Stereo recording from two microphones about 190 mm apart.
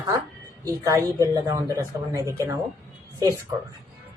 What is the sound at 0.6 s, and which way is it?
Speech, 20° right (ahead or behind).